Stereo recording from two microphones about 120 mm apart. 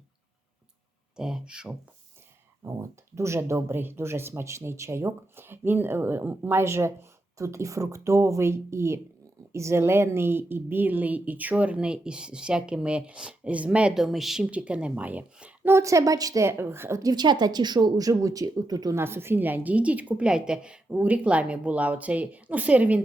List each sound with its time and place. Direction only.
1.1 s a woman's voice: 5° right (ahead or behind)
2.6 s a woman's voice: 25° right (ahead or behind)
15.7 s speech: 25° right (ahead or behind)
18.9 s a woman's voice: 20° right (ahead or behind)